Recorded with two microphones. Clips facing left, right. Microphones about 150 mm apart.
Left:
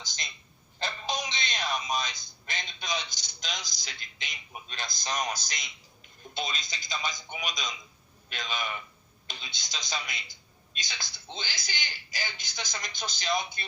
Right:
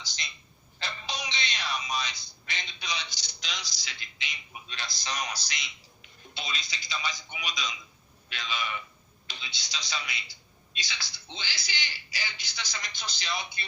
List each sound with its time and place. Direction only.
0.0 s a man's voice: 50° left (ahead or behind)
0.8 s music: 45° left (ahead or behind)
6.3 s a man's voice: 45° left (ahead or behind)